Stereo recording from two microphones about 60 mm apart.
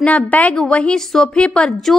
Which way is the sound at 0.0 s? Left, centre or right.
Left.